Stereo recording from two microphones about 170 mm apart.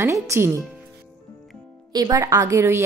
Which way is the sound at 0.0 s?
15° right (ahead or behind).